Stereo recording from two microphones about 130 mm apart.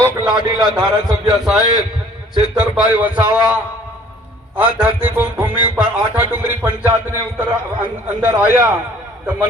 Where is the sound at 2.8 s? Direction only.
10° right (ahead or behind).